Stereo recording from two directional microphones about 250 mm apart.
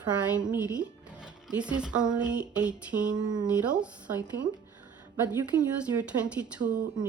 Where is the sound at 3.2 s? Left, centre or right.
Centre.